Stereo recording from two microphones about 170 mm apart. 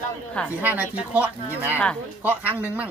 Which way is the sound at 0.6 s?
10° right (ahead or behind).